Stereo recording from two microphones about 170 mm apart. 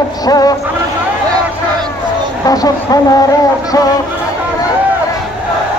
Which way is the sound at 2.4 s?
20° left (ahead or behind).